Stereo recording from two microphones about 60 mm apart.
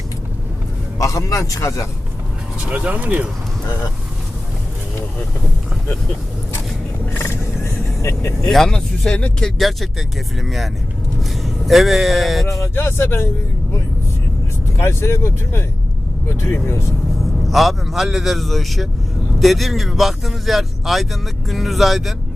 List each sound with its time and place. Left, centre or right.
0.9 s a man's voice: left
2.6 s speech: right
7.0 s vehicle: left
8.4 s speech: centre
9.6 s speech: centre
12.5 s a man's voice: left
12.7 s speech: left
14.8 s speech: left
17.5 s speech: centre